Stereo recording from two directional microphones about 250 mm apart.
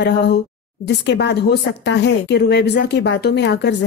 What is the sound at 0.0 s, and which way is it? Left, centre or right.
A woman's voice, left.